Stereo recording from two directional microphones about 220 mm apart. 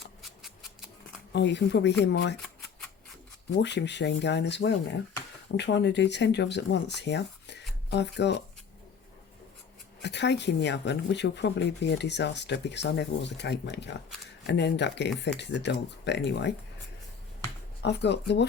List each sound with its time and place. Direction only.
0.0 s scissors: centre (ahead or behind)
1.3 s speech: 50° left (ahead or behind)
3.6 s speech: 50° left (ahead or behind)
10.0 s speech: 50° left (ahead or behind)
17.8 s speech: 50° left (ahead or behind)